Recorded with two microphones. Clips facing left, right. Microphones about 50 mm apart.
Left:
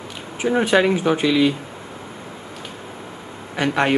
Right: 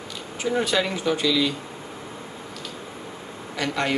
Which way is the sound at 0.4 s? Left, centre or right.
Left.